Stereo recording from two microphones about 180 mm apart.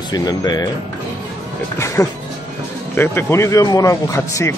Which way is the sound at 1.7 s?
15° left (ahead or behind).